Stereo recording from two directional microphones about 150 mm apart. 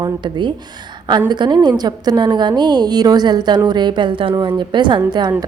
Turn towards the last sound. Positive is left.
turn(degrees=-25)  # may be behind; listen again after turning